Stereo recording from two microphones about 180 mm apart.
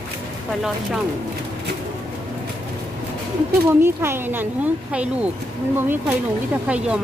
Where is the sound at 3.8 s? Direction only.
10° right (ahead or behind).